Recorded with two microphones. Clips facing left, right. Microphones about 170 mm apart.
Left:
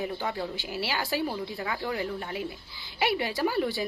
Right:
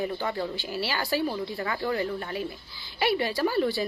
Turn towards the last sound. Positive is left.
turn(degrees=15)  # may be behind; listen again after turning